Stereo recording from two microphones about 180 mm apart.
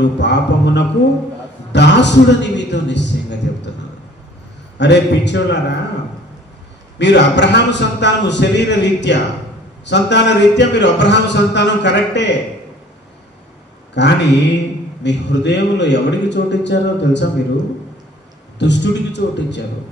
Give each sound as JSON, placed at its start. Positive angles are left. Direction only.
{"t": 0.0, "sound": "speech", "side_deg": 75}
{"t": 4.7, "sound": "speech", "side_deg": 75}
{"t": 7.0, "sound": "speech", "side_deg": 75}
{"t": 13.9, "sound": "speech", "side_deg": 75}
{"t": 18.6, "sound": "speech", "side_deg": 75}